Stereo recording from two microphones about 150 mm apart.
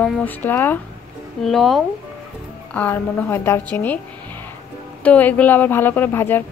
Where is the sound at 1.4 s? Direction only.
Centre (ahead or behind).